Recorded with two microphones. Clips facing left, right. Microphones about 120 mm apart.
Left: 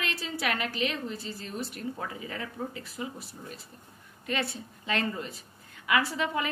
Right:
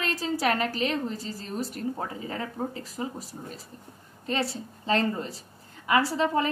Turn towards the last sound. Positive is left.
turn(degrees=-35)  # may be behind; listen again after turning